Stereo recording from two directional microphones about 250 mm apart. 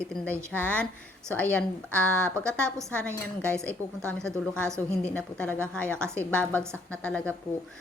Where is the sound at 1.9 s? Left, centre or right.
Centre.